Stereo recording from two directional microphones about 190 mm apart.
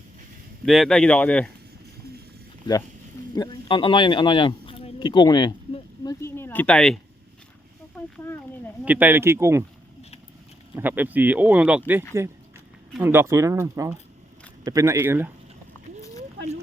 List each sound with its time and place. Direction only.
0.6 s speech: centre (ahead or behind)
3.3 s speech: 25° left (ahead or behind); by 7.0 s 5° left (ahead or behind)
7.9 s a sound: 10° left (ahead or behind)
8.8 s speech: 10° right (ahead or behind)
10.8 s speech: 10° right (ahead or behind)